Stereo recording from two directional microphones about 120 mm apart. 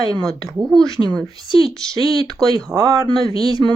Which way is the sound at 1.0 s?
Centre (ahead or behind).